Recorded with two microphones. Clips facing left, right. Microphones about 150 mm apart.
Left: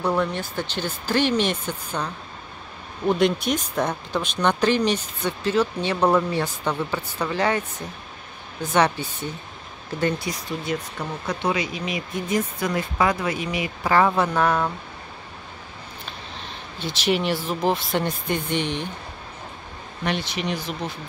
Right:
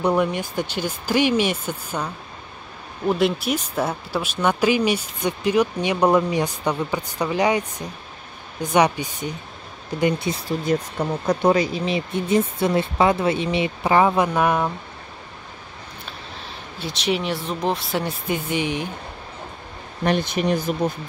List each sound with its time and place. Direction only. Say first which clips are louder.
0.0 s speech: right 3 dB; 15° right (ahead or behind)
3.1 s speech: even; 5° right (ahead or behind)
8.7 s speech: right 2 dB; 15° right (ahead or behind)
10.7 s speech: right 7 dB; 40° right (ahead or behind); by 14.7 s 10° right (ahead or behind)
16.7 s speech: left 1 dB; centre (ahead or behind)
20.1 s speech: right 6 dB; 45° right (ahead or behind)